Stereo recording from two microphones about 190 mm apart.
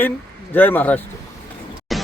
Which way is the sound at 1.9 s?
Centre (ahead or behind).